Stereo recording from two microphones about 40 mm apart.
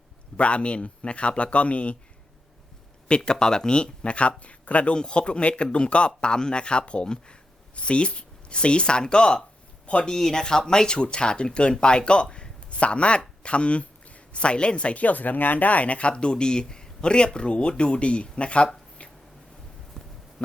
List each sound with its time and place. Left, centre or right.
0.3 s speech: left
3.2 s speech: centre; by 4.9 s left
4.9 s speech: left
10.1 s speech: centre
19.0 s a sound: left
20.0 s a sound: centre